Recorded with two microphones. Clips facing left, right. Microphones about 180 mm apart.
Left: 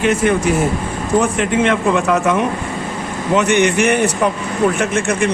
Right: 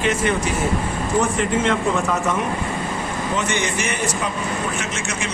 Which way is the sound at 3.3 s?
65° left (ahead or behind).